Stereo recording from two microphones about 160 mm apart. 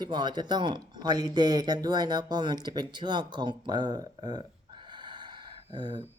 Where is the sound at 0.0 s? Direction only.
25° right (ahead or behind).